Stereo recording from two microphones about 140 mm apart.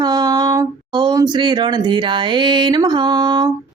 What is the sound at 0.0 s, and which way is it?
Speech, 30° right (ahead or behind).